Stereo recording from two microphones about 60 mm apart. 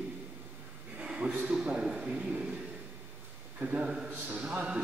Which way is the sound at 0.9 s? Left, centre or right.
Centre.